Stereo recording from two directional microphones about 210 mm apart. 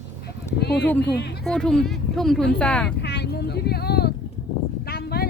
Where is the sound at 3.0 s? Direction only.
50° left (ahead or behind).